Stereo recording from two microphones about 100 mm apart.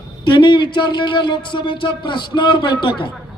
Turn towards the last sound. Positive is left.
turn(degrees=50)  # may be behind; listen again after turning